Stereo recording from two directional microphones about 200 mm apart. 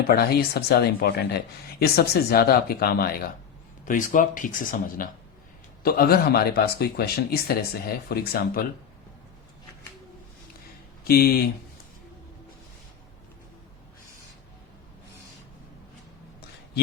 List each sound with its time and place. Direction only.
0.1 s speech: 50° left (ahead or behind)
11.0 s speech: 50° left (ahead or behind)